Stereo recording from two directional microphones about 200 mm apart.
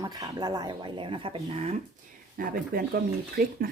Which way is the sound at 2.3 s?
45° right (ahead or behind).